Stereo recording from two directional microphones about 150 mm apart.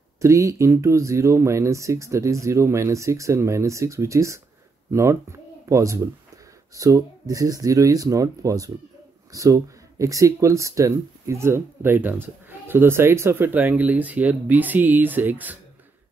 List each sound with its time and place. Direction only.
0.2 s speech: 20° right (ahead or behind)